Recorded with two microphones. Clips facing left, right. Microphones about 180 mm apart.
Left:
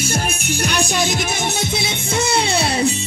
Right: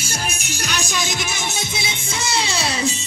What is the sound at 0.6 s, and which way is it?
Music, 55° left (ahead or behind).